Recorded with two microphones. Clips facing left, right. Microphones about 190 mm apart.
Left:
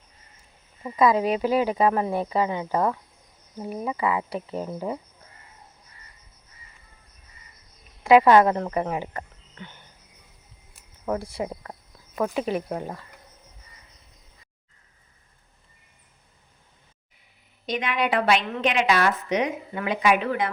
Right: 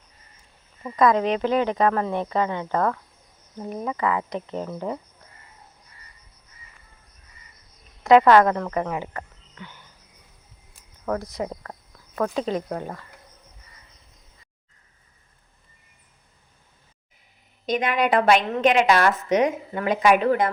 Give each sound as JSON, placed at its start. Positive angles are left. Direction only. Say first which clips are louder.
{"t": 0.8, "sound": "speech", "louder": "right 1 dB", "side_deg": 5}
{"t": 8.0, "sound": "speech", "louder": "right 1 dB", "side_deg": 10}
{"t": 8.6, "sound": "speech", "louder": "even", "side_deg": 30}
{"t": 9.1, "sound": "a sound", "louder": "even", "side_deg": 25}
{"t": 11.0, "sound": "speech", "louder": "right 1 dB", "side_deg": 10}
{"t": 17.7, "sound": "a woman's voice", "louder": "right 4 dB", "side_deg": -45}